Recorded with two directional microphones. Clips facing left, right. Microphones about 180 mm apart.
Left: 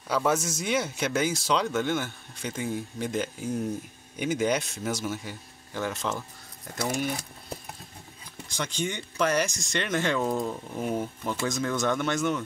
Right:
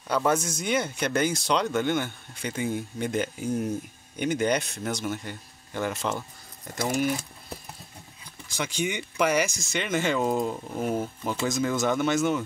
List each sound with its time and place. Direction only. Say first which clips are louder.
0.1 s speech: right 1 dB; centre (ahead or behind)
8.5 s speech: right 2 dB; 5° right (ahead or behind)
10.2 s speech: right 2 dB; 15° right (ahead or behind)
10.8 s speech: right 1 dB; 5° right (ahead or behind)